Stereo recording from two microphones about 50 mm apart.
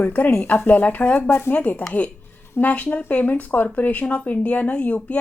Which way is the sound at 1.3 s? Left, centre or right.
Left.